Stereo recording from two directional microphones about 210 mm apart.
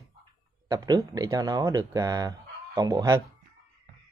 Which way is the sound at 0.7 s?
15° right (ahead or behind).